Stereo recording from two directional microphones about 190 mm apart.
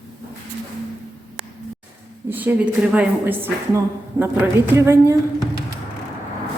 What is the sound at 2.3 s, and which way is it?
A woman's voice, 10° right (ahead or behind).